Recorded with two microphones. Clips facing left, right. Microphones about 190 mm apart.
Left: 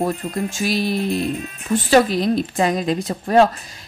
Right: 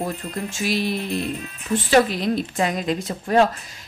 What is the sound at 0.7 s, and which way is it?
Speech, 40° left (ahead or behind).